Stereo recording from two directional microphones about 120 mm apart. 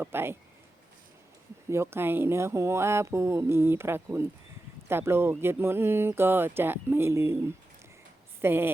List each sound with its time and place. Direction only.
0.0 s speech: 20° right (ahead or behind)
1.7 s speech: 20° right (ahead or behind)